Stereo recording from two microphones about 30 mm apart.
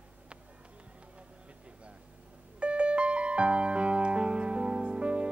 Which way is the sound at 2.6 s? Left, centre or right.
Right.